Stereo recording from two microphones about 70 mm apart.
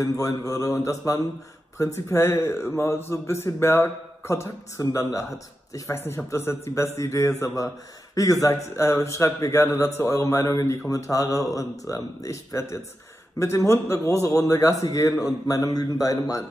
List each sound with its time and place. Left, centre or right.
0.0 s a man's voice: left
5.9 s a man's voice: left
10.0 s a man's voice: left